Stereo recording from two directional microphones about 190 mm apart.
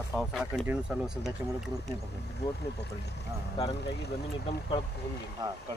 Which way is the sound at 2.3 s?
60° left (ahead or behind).